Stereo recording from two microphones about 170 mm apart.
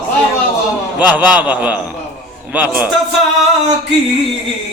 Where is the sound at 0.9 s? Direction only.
10° right (ahead or behind).